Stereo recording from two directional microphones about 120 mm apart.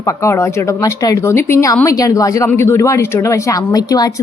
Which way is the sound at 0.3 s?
25° left (ahead or behind).